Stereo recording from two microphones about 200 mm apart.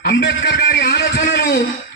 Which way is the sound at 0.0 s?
55° left (ahead or behind).